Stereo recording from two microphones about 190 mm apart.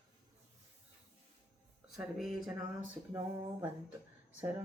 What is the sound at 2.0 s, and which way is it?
Speech, centre (ahead or behind).